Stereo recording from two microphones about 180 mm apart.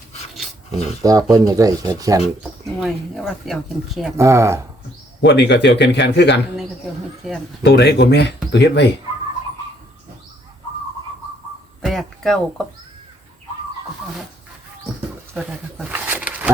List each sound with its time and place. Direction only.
1.0 s speech: 20° right (ahead or behind)
2.4 s speech: centre (ahead or behind)
4.2 s speech: 15° right (ahead or behind)
5.2 s speech: 75° left (ahead or behind)
7.2 s speech: centre (ahead or behind)
7.6 s speech: 70° left (ahead or behind)
11.8 s a sound: centre (ahead or behind)
15.4 s speech: 10° right (ahead or behind)